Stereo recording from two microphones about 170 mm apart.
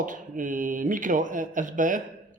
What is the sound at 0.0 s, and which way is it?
Speech, 50° right (ahead or behind).